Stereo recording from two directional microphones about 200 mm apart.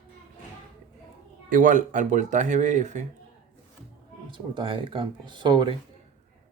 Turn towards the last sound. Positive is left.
turn(degrees=-25)  # may be behind; listen again after turning